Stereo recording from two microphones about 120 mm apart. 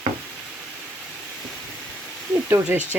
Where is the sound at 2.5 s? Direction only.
10° right (ahead or behind).